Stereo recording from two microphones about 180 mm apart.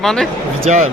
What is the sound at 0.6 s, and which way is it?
Speech, 35° right (ahead or behind).